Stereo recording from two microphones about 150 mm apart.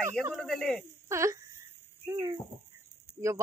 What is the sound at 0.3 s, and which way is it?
Speech, centre (ahead or behind).